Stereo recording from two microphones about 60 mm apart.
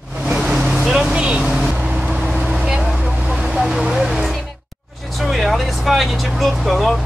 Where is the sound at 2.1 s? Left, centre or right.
Centre.